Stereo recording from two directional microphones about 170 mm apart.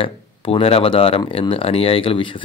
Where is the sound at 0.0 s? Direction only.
35° left (ahead or behind).